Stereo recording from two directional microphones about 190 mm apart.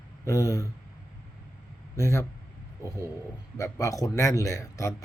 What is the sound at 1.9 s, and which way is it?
Speech, 15° left (ahead or behind).